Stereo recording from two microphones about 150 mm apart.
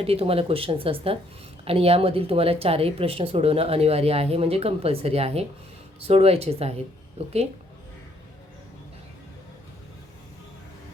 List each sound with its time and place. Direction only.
0.0 s speech: 40° right (ahead or behind)